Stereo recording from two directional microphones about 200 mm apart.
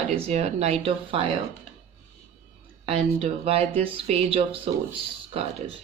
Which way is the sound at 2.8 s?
30° right (ahead or behind).